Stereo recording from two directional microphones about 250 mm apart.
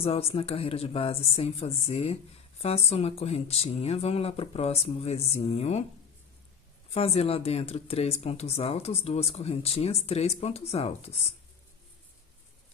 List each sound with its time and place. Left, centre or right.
0.0 s speech: left
6.9 s speech: left